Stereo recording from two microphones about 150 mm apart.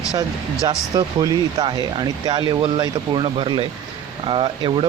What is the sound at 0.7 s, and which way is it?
Speech, 25° right (ahead or behind).